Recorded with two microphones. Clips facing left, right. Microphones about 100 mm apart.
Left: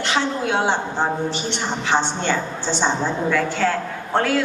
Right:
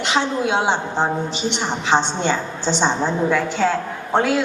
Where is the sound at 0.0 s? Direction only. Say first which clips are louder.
Right 2 dB; 20° right (ahead or behind).